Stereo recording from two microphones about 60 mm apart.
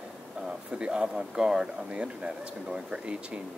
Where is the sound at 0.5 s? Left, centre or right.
Centre.